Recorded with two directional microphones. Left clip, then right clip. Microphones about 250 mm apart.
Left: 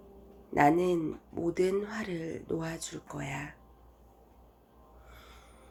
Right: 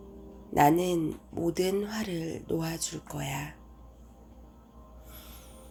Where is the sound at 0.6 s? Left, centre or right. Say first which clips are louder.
Right 2 dB; right.